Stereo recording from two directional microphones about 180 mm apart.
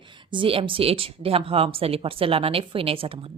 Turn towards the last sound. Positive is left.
turn(degrees=-30)  # may be behind; listen again after turning